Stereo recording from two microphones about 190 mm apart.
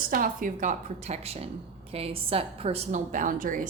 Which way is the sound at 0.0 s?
45° right (ahead or behind).